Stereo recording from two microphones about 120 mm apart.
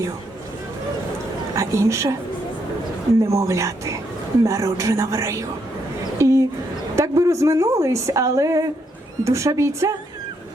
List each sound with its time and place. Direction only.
1.5 s a woman's voice: 25° right (ahead or behind)
3.2 s a woman's voice: 25° right (ahead or behind)